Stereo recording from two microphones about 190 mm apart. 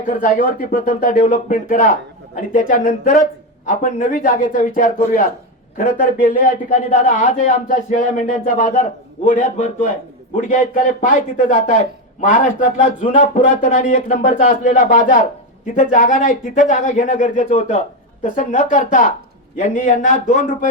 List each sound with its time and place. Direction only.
0.1 s speech: 45° left (ahead or behind)